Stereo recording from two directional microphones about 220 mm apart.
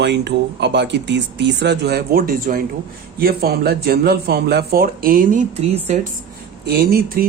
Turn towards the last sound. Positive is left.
turn(degrees=-45)  # may be behind; listen again after turning